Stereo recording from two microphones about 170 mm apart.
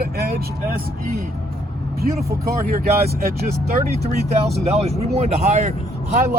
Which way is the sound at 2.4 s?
55° right (ahead or behind).